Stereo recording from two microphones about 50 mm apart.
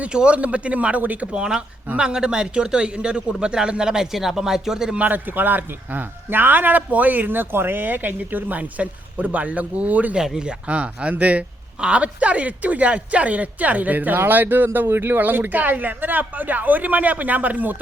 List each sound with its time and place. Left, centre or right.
0.0 s speech: right
1.3 s a man's voice: centre
4.9 s a man's voice: right
10.2 s a man's voice: centre
10.7 s a man's voice: right